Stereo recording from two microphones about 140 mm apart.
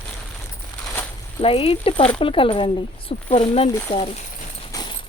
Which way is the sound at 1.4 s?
45° left (ahead or behind).